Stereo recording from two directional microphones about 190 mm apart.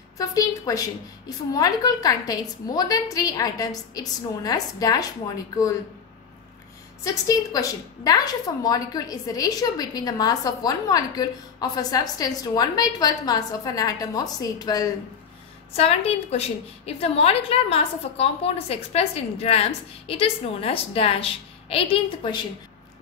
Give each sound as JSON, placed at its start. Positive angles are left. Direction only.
{"t": 0.3, "sound": "a woman's voice", "side_deg": 20}
{"t": 7.2, "sound": "a woman's voice", "side_deg": 20}
{"t": 15.7, "sound": "a woman's voice", "side_deg": 30}